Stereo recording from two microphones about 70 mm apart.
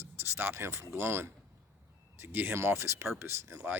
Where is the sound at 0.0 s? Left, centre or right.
Right.